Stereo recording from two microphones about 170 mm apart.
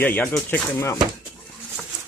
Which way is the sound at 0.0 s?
10° left (ahead or behind).